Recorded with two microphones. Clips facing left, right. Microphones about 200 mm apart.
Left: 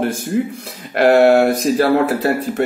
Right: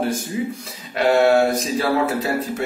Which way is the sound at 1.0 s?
60° left (ahead or behind).